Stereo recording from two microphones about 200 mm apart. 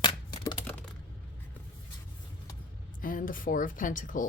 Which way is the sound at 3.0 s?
45° left (ahead or behind).